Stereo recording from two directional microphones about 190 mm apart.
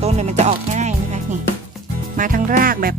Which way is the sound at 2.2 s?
45° right (ahead or behind).